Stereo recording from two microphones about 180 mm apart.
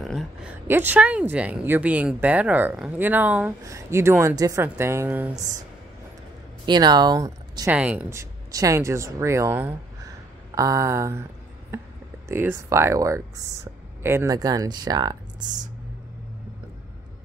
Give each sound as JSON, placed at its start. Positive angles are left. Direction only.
{"t": 0.0, "sound": "speech", "side_deg": 0}
{"t": 6.6, "sound": "speech", "side_deg": -25}
{"t": 7.7, "sound": "speech", "side_deg": -10}
{"t": 12.3, "sound": "speech", "side_deg": -15}